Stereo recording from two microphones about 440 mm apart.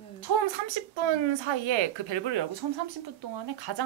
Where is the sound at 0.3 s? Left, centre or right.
Right.